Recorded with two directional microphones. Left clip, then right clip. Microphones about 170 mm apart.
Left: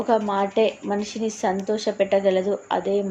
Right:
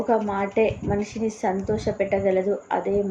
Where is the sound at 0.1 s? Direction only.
15° left (ahead or behind).